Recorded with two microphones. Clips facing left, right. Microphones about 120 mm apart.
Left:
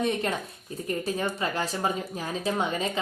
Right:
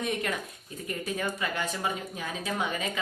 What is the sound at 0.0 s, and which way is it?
Speech, 30° left (ahead or behind).